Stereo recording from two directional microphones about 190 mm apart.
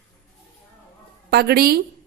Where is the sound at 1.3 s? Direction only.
55° right (ahead or behind).